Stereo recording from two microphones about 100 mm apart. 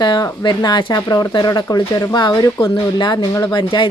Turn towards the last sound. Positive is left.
turn(degrees=50)  # may be behind; listen again after turning